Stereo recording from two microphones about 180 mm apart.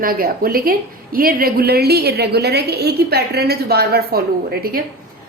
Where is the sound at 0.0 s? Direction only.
55° right (ahead or behind).